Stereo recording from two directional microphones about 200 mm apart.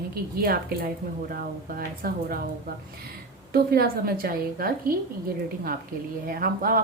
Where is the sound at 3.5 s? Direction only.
50° right (ahead or behind).